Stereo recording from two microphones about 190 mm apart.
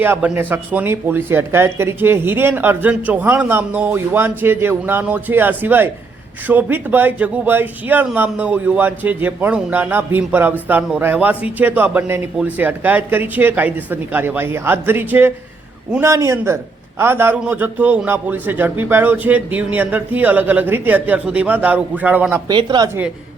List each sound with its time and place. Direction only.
0.0 s speech: 10° right (ahead or behind)
22.4 s speech: 20° right (ahead or behind)